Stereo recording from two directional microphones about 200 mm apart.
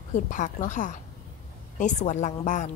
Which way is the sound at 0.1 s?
40° left (ahead or behind).